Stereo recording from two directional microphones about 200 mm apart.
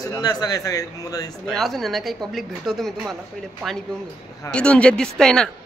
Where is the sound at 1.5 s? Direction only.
Centre (ahead or behind).